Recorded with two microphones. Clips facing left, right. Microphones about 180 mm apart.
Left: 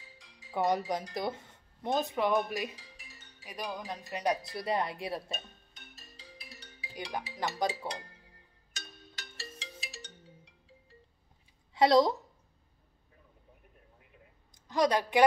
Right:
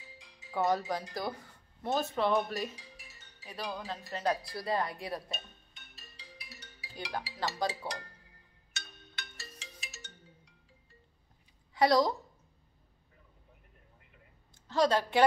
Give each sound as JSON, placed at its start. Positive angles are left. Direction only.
{"t": 0.5, "sound": "speech", "side_deg": 15}
{"t": 6.9, "sound": "speech", "side_deg": 15}
{"t": 8.7, "sound": "music", "side_deg": 35}
{"t": 11.7, "sound": "a woman's voice", "side_deg": 25}
{"t": 14.5, "sound": "a woman's voice", "side_deg": 15}